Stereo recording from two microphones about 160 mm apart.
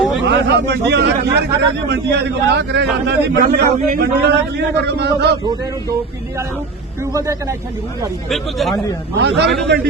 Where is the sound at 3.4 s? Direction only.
65° right (ahead or behind); by 5.4 s 90° right.